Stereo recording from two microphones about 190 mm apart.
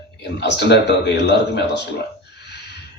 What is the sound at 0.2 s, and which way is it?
Speech, 65° left (ahead or behind).